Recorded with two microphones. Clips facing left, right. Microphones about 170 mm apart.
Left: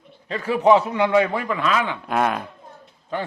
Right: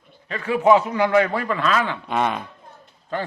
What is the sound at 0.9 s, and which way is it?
A man's voice, 25° left (ahead or behind).